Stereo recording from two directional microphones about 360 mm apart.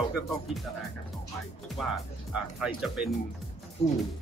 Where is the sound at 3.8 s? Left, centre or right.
Centre.